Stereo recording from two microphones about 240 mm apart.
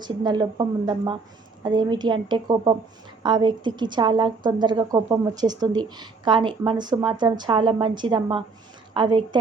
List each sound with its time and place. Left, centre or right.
0.0 s a woman's voice: centre